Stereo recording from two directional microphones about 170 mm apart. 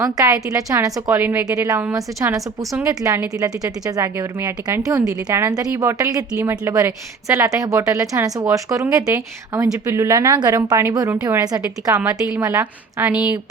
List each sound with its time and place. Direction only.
0.5 s a woman's voice: 20° right (ahead or behind)